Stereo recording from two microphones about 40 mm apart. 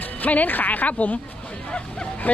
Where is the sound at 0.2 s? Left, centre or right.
Left.